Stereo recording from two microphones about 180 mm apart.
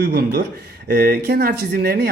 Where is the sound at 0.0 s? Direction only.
60° right (ahead or behind).